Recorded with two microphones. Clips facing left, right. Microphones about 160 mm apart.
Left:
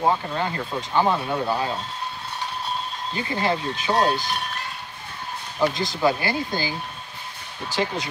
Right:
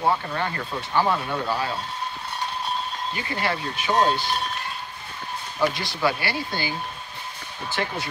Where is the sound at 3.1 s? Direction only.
25° left (ahead or behind).